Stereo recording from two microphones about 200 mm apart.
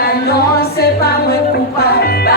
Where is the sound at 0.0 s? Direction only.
50° left (ahead or behind).